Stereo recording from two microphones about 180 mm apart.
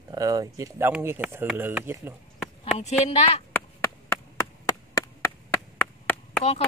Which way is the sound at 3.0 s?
35° left (ahead or behind).